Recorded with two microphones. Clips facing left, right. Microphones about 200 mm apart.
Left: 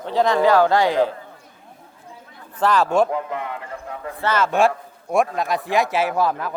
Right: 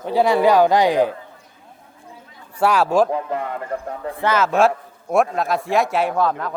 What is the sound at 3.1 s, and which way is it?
A man's voice, 35° right (ahead or behind).